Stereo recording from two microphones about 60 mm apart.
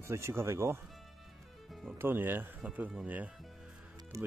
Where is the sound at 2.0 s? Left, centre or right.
Right.